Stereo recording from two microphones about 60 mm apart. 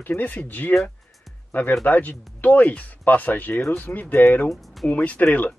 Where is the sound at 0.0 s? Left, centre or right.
Left.